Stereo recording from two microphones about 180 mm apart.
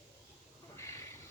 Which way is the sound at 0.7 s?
15° left (ahead or behind).